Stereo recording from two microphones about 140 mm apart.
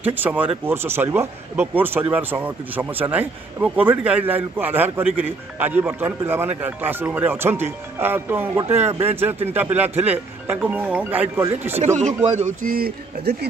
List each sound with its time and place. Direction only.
0.0 s speech: 15° right (ahead or behind)
11.8 s speech: 60° right (ahead or behind); by 12.9 s 90° right